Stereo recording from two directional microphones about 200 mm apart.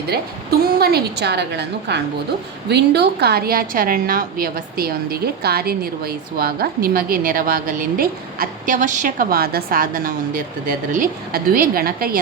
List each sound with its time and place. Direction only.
0.1 s a woman's voice: 50° right (ahead or behind)